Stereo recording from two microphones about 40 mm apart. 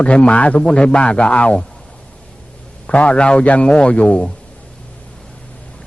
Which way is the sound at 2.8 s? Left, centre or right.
Left.